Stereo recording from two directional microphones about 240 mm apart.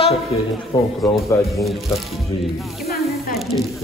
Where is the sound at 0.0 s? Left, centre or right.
Left.